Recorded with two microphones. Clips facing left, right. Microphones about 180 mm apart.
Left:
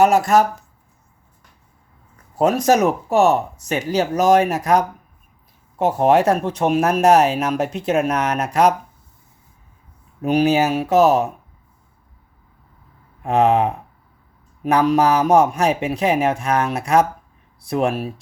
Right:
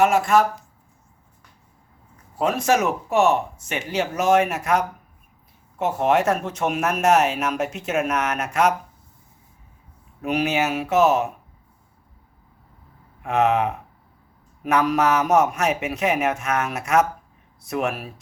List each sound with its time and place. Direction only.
0.0 s speech: 40° left (ahead or behind)
2.4 s speech: 40° left (ahead or behind)
10.2 s speech: 35° left (ahead or behind)
13.2 s speech: 35° left (ahead or behind)